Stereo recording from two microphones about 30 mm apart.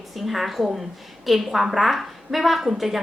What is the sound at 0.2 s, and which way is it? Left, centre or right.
A woman's voice, centre.